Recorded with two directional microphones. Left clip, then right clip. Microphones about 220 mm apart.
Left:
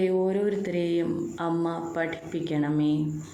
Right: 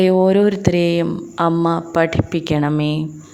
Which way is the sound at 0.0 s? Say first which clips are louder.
Right 11 dB; 50° right (ahead or behind).